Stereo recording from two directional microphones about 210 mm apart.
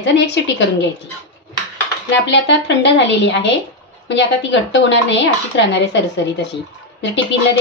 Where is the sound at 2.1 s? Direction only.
60° left (ahead or behind).